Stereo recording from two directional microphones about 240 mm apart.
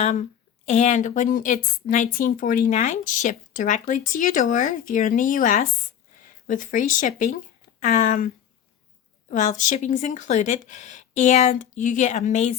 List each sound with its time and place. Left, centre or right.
0.0 s speech: left
9.3 s speech: left